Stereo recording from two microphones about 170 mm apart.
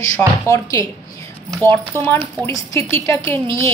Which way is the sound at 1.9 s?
20° right (ahead or behind).